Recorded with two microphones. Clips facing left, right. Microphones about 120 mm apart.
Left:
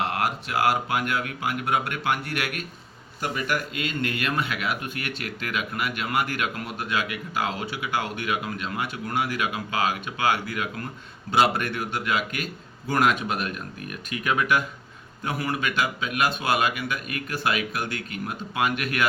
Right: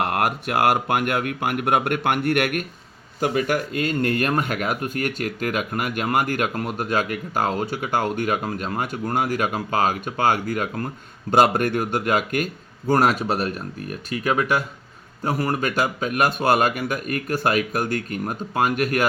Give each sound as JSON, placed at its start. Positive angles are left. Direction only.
{"t": 0.0, "sound": "speech", "side_deg": -55}
{"t": 3.2, "sound": "speech", "side_deg": -45}